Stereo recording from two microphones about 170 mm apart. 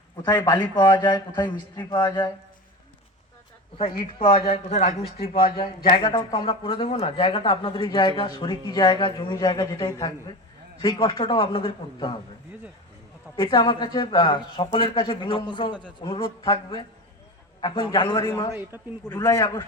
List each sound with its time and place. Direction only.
0.2 s speech: 25° left (ahead or behind)
3.8 s speech: 35° left (ahead or behind)
13.3 s speech: 25° left (ahead or behind)